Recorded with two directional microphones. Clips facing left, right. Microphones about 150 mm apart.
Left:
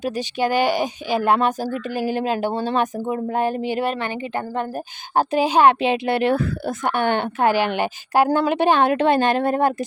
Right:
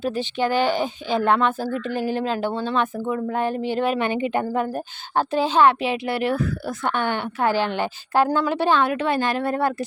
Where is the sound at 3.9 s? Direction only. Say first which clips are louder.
Right 4 dB; 20° right (ahead or behind).